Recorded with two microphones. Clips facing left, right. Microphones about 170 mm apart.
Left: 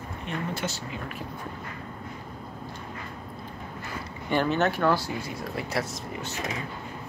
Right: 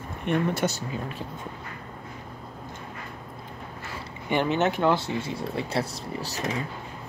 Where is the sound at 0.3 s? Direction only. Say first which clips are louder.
Right 9 dB; 60° right (ahead or behind).